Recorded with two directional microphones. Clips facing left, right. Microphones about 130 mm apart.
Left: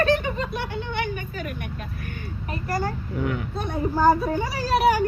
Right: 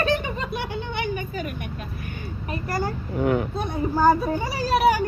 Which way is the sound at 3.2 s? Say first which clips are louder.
Right 7 dB; 35° right (ahead or behind).